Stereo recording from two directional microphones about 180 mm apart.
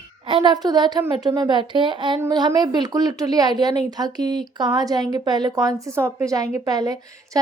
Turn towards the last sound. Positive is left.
turn(degrees=-20)  # may be behind; listen again after turning